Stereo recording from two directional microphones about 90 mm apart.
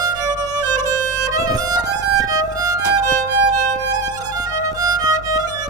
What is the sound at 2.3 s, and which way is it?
Violin, 45° right (ahead or behind).